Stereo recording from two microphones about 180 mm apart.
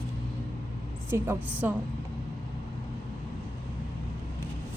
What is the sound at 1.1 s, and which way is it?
Speech, 10° right (ahead or behind).